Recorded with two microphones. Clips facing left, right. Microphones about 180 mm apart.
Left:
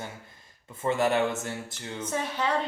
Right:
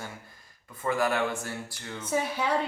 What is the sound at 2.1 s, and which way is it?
Speech, 10° right (ahead or behind).